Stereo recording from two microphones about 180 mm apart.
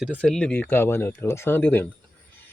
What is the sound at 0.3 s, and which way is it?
Speech, 5° left (ahead or behind).